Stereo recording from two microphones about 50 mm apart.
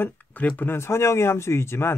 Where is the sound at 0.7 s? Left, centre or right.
Left.